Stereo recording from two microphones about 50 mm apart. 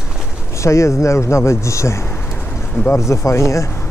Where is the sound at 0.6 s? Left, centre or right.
Left.